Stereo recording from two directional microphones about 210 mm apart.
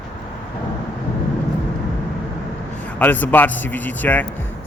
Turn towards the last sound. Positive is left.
turn(degrees=10)  # may be behind; listen again after turning